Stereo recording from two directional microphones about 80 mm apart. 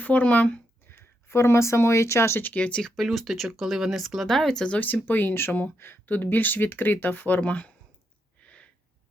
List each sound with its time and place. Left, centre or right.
0.0 s speech: centre
2.4 s speech: centre
2.9 s speech: centre; by 7.7 s left
8.4 s a sound: centre